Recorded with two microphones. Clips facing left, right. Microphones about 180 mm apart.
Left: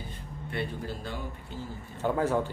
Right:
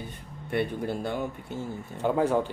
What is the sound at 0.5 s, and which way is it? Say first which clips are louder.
Speech: right 6 dB; 60° right (ahead or behind).